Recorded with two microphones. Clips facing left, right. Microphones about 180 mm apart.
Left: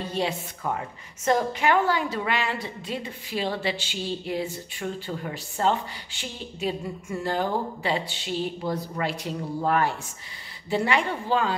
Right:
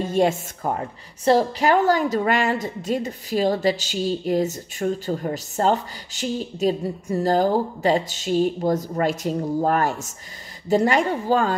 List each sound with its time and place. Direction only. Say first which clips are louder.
0.0 s a woman's voice: right 8 dB; 45° right (ahead or behind)